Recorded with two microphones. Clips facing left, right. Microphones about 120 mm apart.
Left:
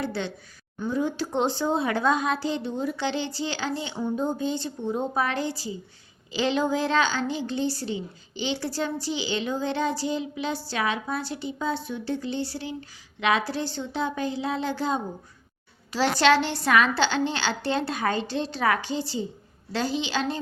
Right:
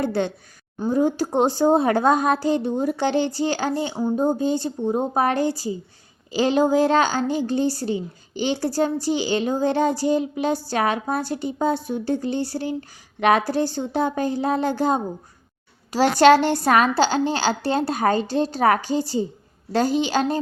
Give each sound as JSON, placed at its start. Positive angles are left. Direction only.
{"t": 0.0, "sound": "a woman's voice", "side_deg": -45}
{"t": 16.2, "sound": "a woman's voice", "side_deg": -45}